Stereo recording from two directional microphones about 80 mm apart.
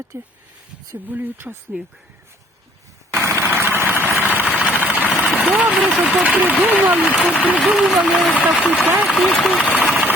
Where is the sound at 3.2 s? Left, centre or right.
Right.